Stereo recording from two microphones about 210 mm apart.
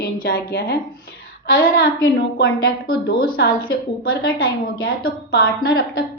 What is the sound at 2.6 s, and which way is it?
A woman's voice, 45° left (ahead or behind).